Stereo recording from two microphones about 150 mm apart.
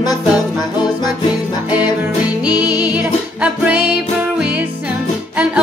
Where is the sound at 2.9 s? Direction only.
10° right (ahead or behind).